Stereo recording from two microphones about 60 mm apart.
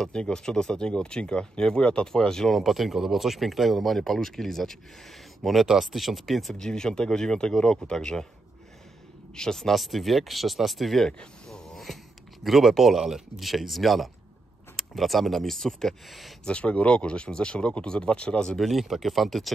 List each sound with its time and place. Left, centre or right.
0.0 s speech: centre
6.5 s speech: centre
9.3 s speech: centre
11.1 s a sound: centre
12.4 s speech: centre
16.4 s speech: centre
18.6 s speech: centre